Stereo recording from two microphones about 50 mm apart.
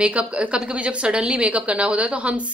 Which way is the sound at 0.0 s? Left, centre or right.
Right.